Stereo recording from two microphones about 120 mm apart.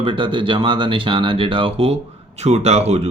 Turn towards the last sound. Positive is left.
turn(degrees=-65)  # may be behind; listen again after turning